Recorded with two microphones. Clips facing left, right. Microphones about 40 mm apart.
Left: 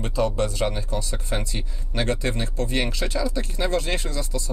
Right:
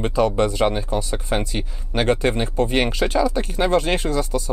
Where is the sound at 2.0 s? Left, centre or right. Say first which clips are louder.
Right 6 dB; right.